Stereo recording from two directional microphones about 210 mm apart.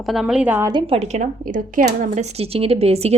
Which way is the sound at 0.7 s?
25° right (ahead or behind).